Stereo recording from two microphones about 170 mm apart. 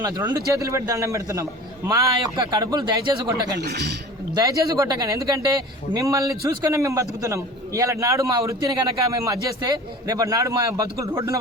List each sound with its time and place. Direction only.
0.3 s a man's voice: 20° right (ahead or behind)
3.6 s a man's voice: 75° right (ahead or behind)
4.4 s a man's voice: 20° right (ahead or behind)